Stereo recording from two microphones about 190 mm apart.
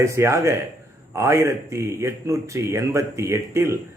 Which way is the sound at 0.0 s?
15° right (ahead or behind).